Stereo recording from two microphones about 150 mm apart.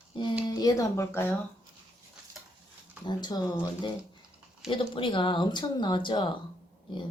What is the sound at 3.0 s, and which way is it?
Speech, 25° left (ahead or behind).